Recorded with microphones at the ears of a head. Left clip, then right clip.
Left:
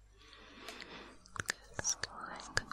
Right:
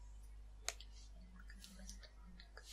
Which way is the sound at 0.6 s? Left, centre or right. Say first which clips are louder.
Left 2 dB; left.